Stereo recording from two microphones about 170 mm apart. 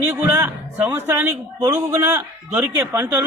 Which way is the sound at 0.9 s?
15° right (ahead or behind).